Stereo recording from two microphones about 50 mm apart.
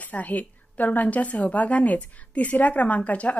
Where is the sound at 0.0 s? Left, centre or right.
Left.